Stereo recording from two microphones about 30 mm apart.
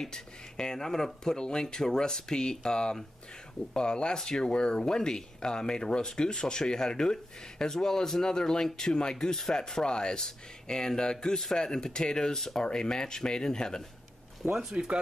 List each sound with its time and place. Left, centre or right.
0.0 s speech: left
14.4 s speech: centre